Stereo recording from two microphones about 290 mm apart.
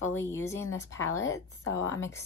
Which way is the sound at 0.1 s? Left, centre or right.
Centre.